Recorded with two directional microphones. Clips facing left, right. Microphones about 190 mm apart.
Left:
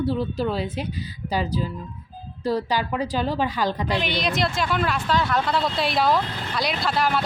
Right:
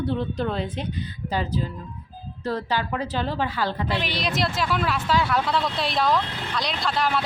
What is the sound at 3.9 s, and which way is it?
Speech, centre (ahead or behind).